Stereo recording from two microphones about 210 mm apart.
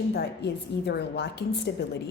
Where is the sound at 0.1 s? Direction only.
55° left (ahead or behind).